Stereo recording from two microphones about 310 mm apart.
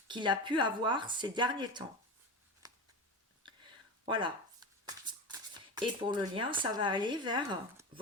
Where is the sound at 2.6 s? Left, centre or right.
Centre.